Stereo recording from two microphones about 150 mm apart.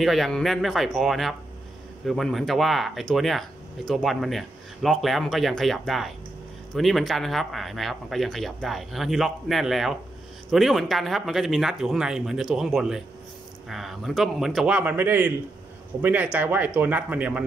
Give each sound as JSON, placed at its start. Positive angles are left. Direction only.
{"t": 0.0, "sound": "speech", "side_deg": 0}